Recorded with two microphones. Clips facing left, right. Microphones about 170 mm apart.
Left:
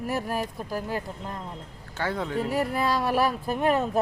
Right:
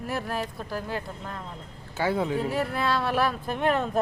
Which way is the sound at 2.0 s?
10° right (ahead or behind).